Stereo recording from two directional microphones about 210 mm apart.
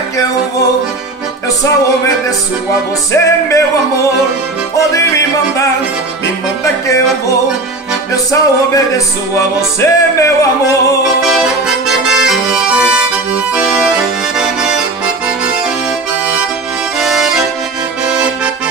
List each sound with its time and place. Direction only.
3.1 s music: 15° left (ahead or behind)
6.6 s music: 15° left (ahead or behind)
11.2 s accordion: centre (ahead or behind)
17.0 s accordion: centre (ahead or behind)